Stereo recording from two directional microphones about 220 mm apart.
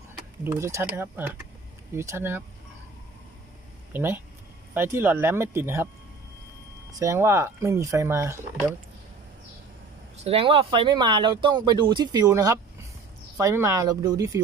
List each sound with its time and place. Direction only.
0.4 s speech: 10° right (ahead or behind)
3.9 s speech: 10° right (ahead or behind)
6.9 s speech: 15° right (ahead or behind)
10.2 s speech: 25° right (ahead or behind)